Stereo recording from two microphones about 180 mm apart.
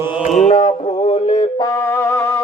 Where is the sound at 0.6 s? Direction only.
35° left (ahead or behind).